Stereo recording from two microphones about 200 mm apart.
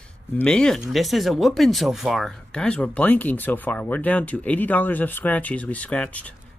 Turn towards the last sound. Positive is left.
turn(degrees=5)  # may be behind; listen again after turning